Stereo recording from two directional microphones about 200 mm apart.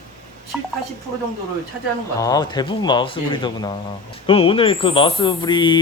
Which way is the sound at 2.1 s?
15° left (ahead or behind).